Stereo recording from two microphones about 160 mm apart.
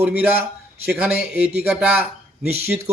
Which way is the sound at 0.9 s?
5° right (ahead or behind).